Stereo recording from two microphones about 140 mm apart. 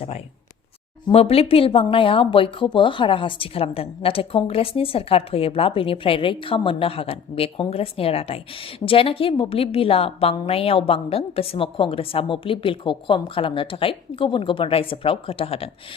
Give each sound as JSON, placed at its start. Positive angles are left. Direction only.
{"t": 1.1, "sound": "speech", "side_deg": 45}